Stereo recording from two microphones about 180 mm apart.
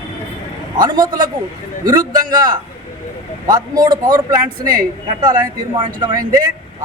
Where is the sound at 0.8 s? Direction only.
20° right (ahead or behind).